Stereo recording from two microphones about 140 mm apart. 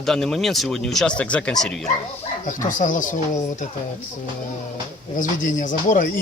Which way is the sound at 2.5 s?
70° left (ahead or behind).